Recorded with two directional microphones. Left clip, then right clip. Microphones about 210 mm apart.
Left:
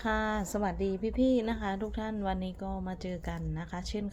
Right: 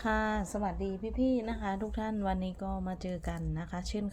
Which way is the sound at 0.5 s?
15° left (ahead or behind).